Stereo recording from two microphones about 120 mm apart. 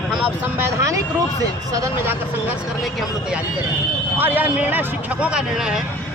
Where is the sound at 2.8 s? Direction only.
Centre (ahead or behind).